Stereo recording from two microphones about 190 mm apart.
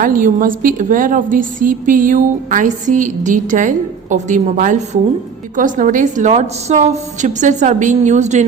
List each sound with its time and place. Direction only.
0.0 s a woman's voice: 45° right (ahead or behind)